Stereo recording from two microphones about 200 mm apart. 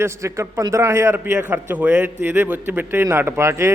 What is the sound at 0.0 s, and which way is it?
A man's voice, 15° right (ahead or behind).